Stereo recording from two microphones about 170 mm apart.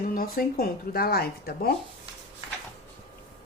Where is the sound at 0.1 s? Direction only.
60° left (ahead or behind).